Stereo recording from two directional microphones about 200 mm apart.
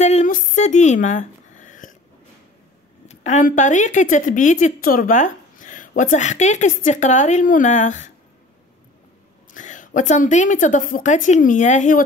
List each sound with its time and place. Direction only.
0.0 s a sound: 35° left (ahead or behind)
3.1 s a woman's voice: 35° left (ahead or behind)
9.5 s a woman's voice: 40° left (ahead or behind)